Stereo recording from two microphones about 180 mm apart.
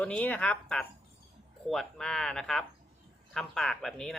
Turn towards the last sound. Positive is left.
turn(degrees=5)  # may be behind; listen again after turning